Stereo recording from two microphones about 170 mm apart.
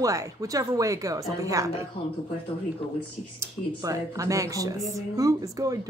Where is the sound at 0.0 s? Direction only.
20° right (ahead or behind).